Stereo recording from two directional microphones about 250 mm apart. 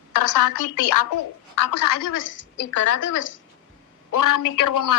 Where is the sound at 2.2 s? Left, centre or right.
Left.